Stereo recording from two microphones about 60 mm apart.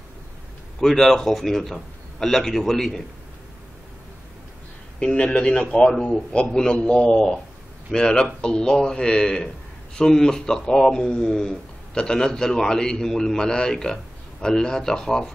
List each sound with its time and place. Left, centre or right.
0.7 s a man's voice: centre
4.9 s speech: centre